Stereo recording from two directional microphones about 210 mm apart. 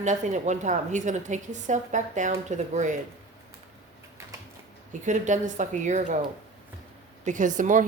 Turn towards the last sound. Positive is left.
turn(degrees=-40)  # may be behind; listen again after turning